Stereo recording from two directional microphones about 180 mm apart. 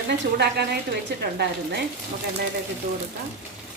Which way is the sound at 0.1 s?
70° right (ahead or behind).